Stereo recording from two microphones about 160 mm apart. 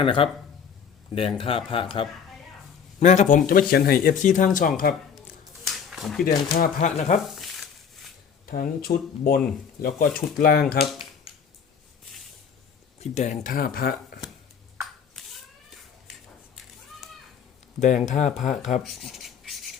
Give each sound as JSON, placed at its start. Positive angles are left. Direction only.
{"t": 0.0, "sound": "speech", "side_deg": 35}
{"t": 3.0, "sound": "speech", "side_deg": 45}
{"t": 5.9, "sound": "speech", "side_deg": 0}
{"t": 6.2, "sound": "speech", "side_deg": 55}
{"t": 7.3, "sound": "a sound", "side_deg": 0}
{"t": 8.4, "sound": "speech", "side_deg": 65}
{"t": 11.3, "sound": "a sound", "side_deg": 35}
{"t": 13.0, "sound": "speech", "side_deg": 45}
{"t": 18.0, "sound": "speech", "side_deg": 45}
{"t": 18.8, "sound": "a sound", "side_deg": 0}